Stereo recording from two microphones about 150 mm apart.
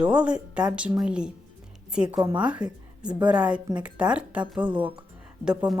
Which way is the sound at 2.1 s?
30° right (ahead or behind).